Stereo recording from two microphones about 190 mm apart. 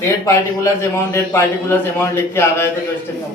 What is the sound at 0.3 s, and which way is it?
A man's voice, 15° left (ahead or behind).